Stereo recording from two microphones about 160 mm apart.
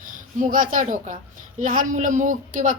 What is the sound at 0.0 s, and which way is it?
A woman's voice, 55° right (ahead or behind).